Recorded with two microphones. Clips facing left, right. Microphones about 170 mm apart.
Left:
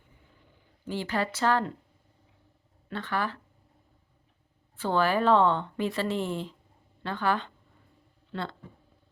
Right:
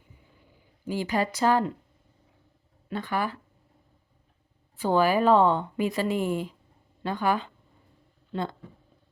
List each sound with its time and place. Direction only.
0.9 s speech: 10° right (ahead or behind)
2.9 s speech: 10° right (ahead or behind)
4.8 s speech: 10° right (ahead or behind)